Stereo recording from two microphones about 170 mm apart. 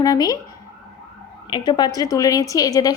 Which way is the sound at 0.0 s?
20° left (ahead or behind).